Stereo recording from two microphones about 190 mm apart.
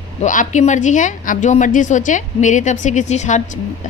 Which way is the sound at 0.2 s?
40° left (ahead or behind).